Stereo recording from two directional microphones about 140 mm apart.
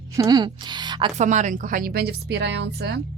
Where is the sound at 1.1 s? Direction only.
60° right (ahead or behind); by 2.1 s 90° right.